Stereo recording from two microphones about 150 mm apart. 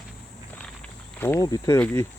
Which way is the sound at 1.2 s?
15° left (ahead or behind).